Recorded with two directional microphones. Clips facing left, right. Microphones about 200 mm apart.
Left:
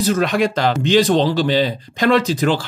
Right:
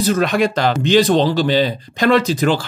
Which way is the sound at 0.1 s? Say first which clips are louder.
Right 1 dB; 50° right (ahead or behind).